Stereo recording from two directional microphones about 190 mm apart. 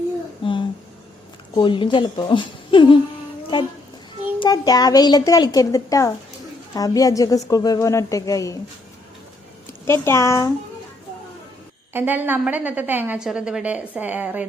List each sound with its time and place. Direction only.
0.4 s a sound: 25° left (ahead or behind)
1.5 s a child's voice: 25° left (ahead or behind)
4.4 s a child's voice: 20° left (ahead or behind)
9.8 s a woman's voice: 15° left (ahead or behind)
11.9 s a woman's voice: 10° right (ahead or behind)